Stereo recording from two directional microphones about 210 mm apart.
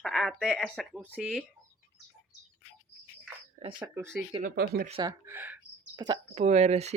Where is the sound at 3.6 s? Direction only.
25° right (ahead or behind).